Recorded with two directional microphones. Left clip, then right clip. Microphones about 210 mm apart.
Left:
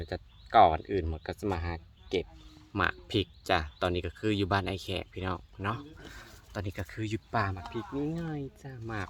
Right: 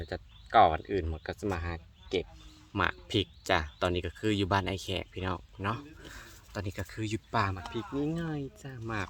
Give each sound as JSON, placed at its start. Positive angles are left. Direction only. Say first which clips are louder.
{"t": 0.0, "sound": "speech", "louder": "left 1 dB", "side_deg": 10}